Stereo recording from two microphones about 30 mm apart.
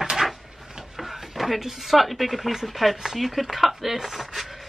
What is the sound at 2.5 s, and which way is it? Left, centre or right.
A woman's voice, centre.